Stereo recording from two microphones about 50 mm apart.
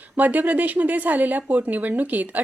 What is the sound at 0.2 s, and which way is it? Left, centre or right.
Speech, right.